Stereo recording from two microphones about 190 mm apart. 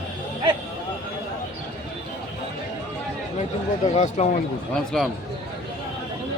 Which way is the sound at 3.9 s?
35° left (ahead or behind).